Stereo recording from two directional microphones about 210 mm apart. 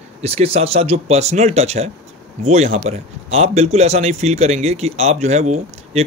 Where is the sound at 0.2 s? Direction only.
30° right (ahead or behind).